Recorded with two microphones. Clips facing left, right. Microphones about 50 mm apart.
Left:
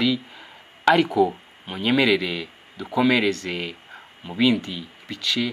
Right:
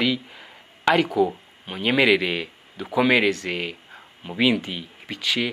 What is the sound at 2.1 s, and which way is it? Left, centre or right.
Speech, right.